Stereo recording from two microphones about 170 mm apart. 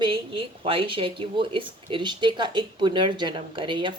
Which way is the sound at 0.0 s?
30° right (ahead or behind).